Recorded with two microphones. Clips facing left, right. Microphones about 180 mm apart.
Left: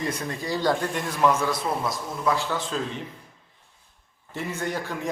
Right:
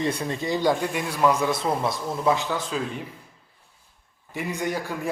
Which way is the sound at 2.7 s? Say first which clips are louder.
Right 1 dB; 5° right (ahead or behind).